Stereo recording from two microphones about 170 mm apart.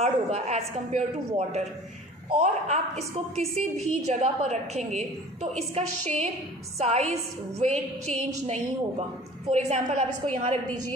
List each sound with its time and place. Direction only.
0.0 s a woman's voice: 40° right (ahead or behind)
7.5 s music: 40° right (ahead or behind)
8.5 s a woman's voice: 40° right (ahead or behind)
9.5 s music: 40° right (ahead or behind)